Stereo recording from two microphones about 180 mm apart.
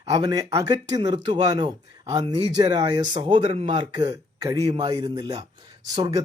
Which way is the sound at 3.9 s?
20° right (ahead or behind).